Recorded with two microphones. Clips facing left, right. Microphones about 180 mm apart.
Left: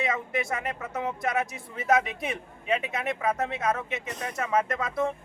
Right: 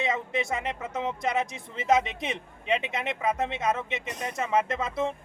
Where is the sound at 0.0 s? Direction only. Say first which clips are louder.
Even; 20° right (ahead or behind).